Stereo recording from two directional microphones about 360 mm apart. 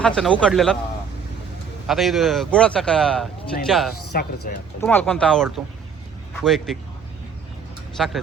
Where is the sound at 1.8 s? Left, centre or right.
Centre.